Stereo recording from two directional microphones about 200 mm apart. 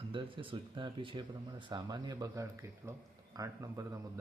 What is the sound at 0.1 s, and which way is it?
Speech, 25° right (ahead or behind).